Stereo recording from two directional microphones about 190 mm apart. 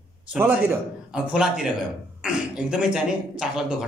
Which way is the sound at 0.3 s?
5° right (ahead or behind).